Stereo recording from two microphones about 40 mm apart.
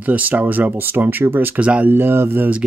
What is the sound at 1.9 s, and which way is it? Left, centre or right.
Speech, right.